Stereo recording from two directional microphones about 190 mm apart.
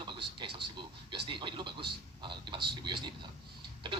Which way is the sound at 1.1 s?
25° right (ahead or behind).